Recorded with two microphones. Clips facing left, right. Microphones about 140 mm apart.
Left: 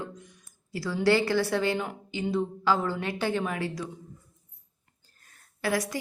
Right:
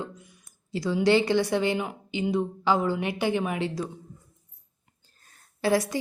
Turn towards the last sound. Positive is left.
turn(degrees=-25)  # may be behind; listen again after turning